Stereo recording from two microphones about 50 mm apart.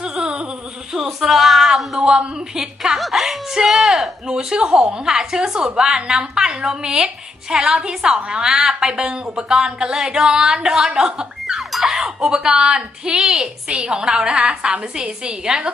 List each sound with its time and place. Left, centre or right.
0.0 s a sound: centre
0.9 s speech: centre
2.0 s a woman's voice: centre
4.3 s a woman's voice: centre